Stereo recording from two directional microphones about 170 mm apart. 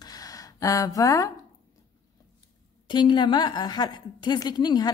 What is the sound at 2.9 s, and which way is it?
A woman's voice, 25° left (ahead or behind).